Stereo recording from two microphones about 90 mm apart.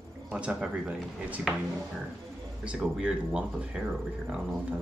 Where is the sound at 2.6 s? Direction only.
10° right (ahead or behind).